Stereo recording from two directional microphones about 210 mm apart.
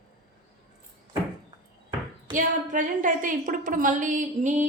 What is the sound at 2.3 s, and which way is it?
A woman's voice, 40° right (ahead or behind).